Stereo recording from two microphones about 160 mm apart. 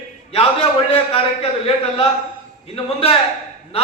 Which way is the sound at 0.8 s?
35° left (ahead or behind).